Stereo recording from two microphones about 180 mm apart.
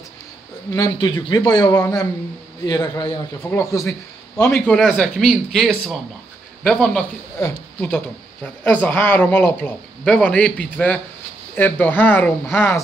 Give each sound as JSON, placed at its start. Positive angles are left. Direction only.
{"t": 0.7, "sound": "a man's voice", "side_deg": 20}